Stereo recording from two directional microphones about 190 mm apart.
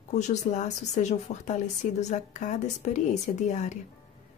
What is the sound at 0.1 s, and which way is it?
Speech, 40° left (ahead or behind).